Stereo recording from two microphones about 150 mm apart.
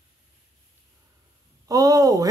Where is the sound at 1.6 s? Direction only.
25° right (ahead or behind).